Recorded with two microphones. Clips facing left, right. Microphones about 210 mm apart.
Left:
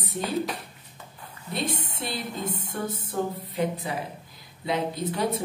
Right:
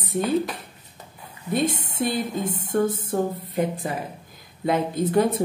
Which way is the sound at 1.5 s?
50° right (ahead or behind).